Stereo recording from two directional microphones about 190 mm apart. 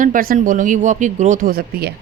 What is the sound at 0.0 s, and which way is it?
Speech, 45° right (ahead or behind).